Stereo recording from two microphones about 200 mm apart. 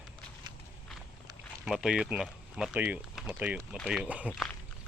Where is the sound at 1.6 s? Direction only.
5° right (ahead or behind).